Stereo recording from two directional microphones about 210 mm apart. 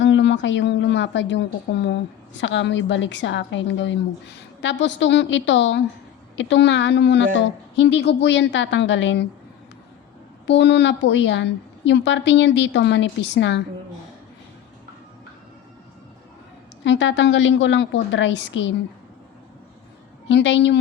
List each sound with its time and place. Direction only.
0.0 s a woman's voice: 60° left (ahead or behind)
10.4 s a woman's voice: 55° left (ahead or behind)
16.8 s a woman's voice: 60° left (ahead or behind)
20.2 s a woman's voice: 60° left (ahead or behind)